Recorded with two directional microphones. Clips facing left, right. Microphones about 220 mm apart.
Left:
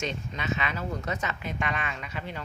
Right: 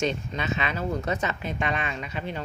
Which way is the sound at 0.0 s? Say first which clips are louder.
Right 5 dB; 30° right (ahead or behind).